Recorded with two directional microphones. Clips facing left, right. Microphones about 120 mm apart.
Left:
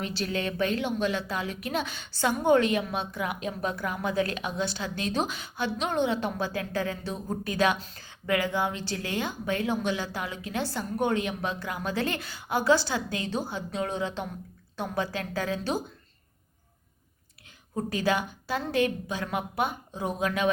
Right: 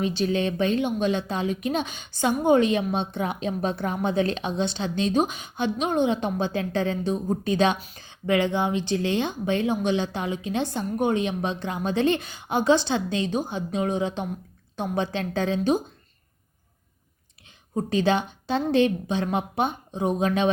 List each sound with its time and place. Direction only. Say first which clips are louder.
0.0 s a woman's voice: right 6 dB; 20° right (ahead or behind)
17.7 s a woman's voice: right 5 dB; 25° right (ahead or behind)